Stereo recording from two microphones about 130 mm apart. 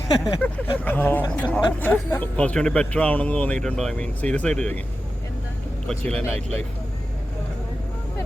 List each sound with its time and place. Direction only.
0.4 s speech: 15° left (ahead or behind)
5.9 s speech: 5° left (ahead or behind)
6.3 s speech: 55° right (ahead or behind)